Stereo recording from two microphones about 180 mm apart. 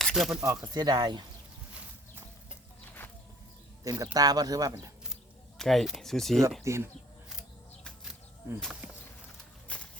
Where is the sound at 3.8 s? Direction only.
20° right (ahead or behind).